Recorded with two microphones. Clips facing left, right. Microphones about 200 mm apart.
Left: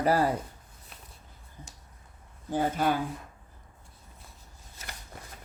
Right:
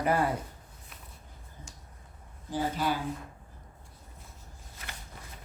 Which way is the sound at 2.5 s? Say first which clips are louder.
Left 3 dB; 50° left (ahead or behind).